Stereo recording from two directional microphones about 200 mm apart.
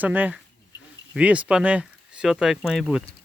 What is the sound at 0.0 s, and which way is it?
Speech, 10° right (ahead or behind).